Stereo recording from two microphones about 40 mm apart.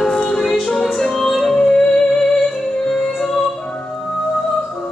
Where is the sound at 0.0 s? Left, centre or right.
Centre.